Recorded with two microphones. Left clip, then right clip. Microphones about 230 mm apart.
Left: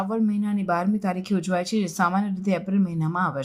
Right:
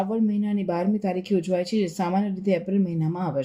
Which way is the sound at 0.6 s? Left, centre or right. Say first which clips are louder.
Left 2 dB; centre.